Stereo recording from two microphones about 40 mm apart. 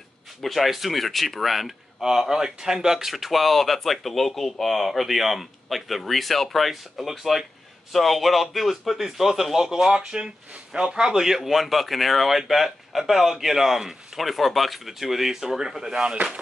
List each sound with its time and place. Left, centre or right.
0.4 s a man's voice: centre
9.9 s speech: centre
15.9 s speech: right